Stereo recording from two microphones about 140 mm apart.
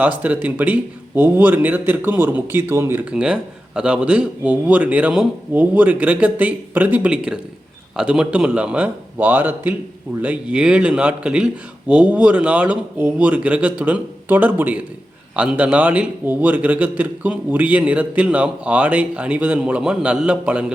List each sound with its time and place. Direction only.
0.0 s a man's voice: 10° right (ahead or behind)